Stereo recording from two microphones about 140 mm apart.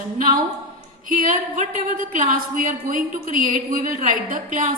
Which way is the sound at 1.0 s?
70° right (ahead or behind).